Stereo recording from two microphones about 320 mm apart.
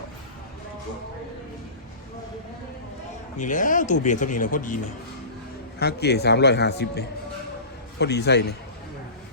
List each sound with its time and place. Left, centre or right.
3.3 s speech: left
5.8 s a man's voice: left